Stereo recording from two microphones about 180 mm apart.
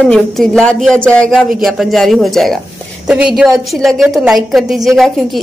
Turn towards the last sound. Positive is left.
turn(degrees=0)  # may be behind; listen again after turning